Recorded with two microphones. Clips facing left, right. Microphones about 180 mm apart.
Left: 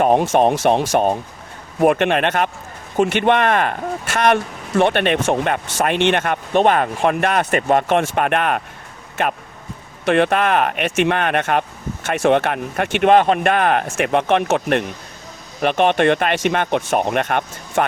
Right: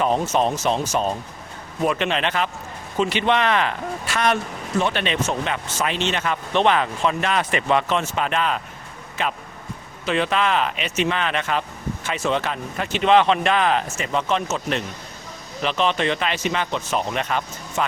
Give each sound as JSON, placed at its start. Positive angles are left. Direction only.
{"t": 0.0, "sound": "speech", "side_deg": 55}
{"t": 1.8, "sound": "speech", "side_deg": 55}
{"t": 10.1, "sound": "speech", "side_deg": 55}